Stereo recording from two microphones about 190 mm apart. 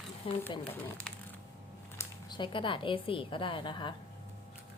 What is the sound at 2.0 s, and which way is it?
A woman's voice, 25° left (ahead or behind).